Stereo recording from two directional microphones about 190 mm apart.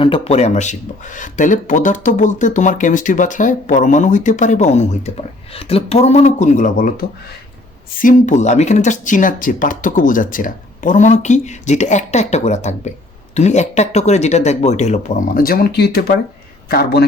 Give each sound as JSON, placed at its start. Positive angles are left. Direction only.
{"t": 0.0, "sound": "a man's voice", "side_deg": 30}